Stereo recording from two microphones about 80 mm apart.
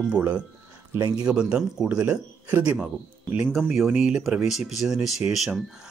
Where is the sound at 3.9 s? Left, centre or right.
Centre.